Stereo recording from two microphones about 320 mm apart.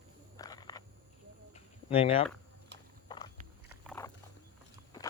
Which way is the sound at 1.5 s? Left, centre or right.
Centre.